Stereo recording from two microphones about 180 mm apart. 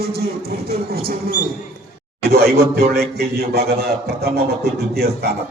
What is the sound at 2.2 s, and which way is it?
A man's voice, 60° right (ahead or behind).